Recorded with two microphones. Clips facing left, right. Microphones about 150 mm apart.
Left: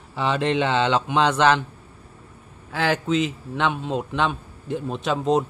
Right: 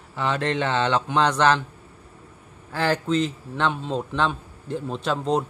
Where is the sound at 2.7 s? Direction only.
10° left (ahead or behind).